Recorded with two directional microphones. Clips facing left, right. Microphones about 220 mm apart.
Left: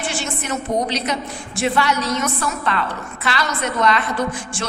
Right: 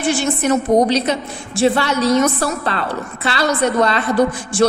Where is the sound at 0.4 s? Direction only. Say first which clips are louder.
Right 9 dB; 35° right (ahead or behind).